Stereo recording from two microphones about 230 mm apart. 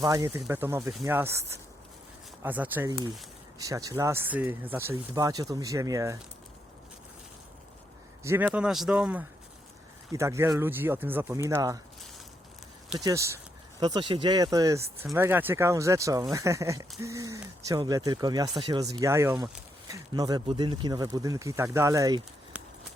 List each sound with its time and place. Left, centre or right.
0.0 s speech: centre
2.4 s speech: centre
8.2 s a man's voice: centre
13.0 s speech: centre